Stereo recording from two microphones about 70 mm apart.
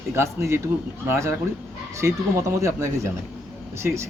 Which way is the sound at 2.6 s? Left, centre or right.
Right.